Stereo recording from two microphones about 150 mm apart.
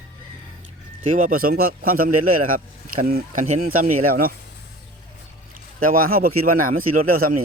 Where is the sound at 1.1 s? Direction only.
65° right (ahead or behind).